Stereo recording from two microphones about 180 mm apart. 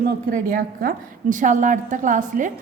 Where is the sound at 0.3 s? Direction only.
50° right (ahead or behind).